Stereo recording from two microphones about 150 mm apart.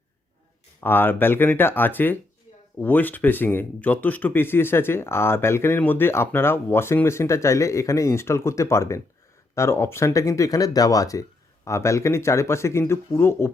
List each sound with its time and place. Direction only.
0.8 s speech: 15° left (ahead or behind)